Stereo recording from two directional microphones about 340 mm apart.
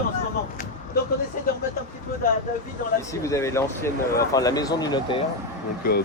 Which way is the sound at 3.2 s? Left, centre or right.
Centre.